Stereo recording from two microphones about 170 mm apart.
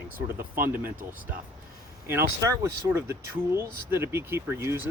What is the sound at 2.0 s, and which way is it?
Speech, 15° right (ahead or behind).